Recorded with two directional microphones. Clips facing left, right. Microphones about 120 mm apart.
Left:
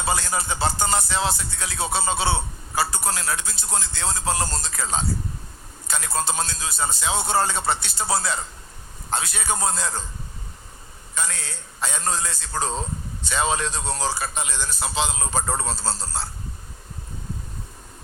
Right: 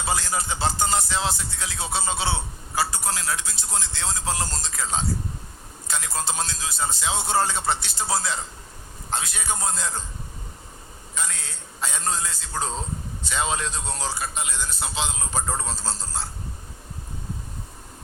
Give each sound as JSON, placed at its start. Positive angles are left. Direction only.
{"t": 0.0, "sound": "music", "side_deg": 60}
{"t": 9.1, "sound": "a man's voice", "side_deg": 65}
{"t": 11.2, "sound": "a man's voice", "side_deg": 80}